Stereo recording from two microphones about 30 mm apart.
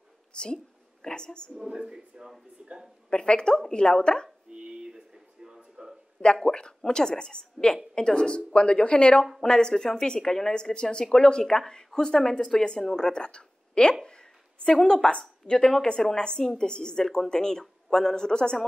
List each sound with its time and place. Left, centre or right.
0.3 s a sound: left
1.0 s speech: left
1.7 s speech: right
3.1 s a woman's voice: left
4.5 s a sound: right
6.4 s speech: left
9.4 s speech: left
12.9 s a woman's voice: left
14.0 s a sound: left
14.7 s a woman's voice: centre
15.0 s speech: left
15.7 s a woman's voice: centre
16.2 s speech: left